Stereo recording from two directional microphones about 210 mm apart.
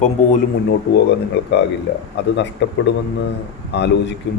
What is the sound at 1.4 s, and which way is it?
A man's voice, 55° left (ahead or behind).